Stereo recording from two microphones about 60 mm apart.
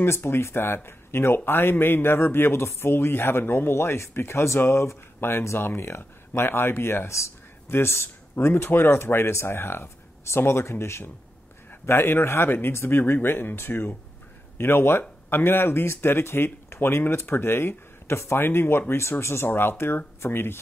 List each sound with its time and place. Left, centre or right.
0.0 s a man's voice: left